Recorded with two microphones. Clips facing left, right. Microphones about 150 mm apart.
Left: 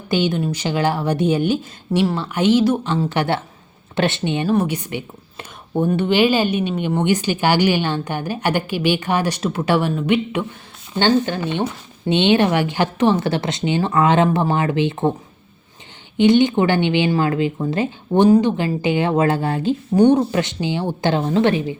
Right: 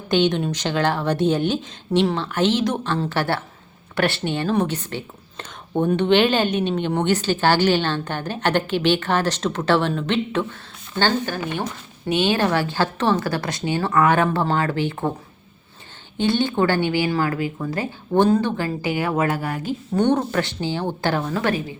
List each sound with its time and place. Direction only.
0.1 s a woman's voice: 5° left (ahead or behind)
16.1 s speech: 20° left (ahead or behind)
20.0 s a woman's voice: 10° left (ahead or behind)